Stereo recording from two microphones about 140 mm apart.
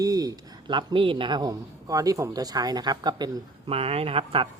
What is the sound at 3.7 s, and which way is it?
Speech, 45° right (ahead or behind).